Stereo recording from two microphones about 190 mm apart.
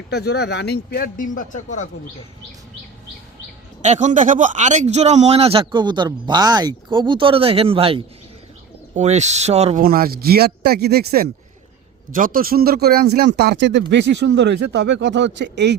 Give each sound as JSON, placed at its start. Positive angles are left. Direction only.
{"t": 0.1, "sound": "a man's voice", "side_deg": 60}
{"t": 3.8, "sound": "speech", "side_deg": -40}
{"t": 9.8, "sound": "speech", "side_deg": -50}